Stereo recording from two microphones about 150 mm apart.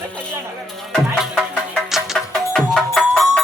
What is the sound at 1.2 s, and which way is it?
Music, 5° right (ahead or behind).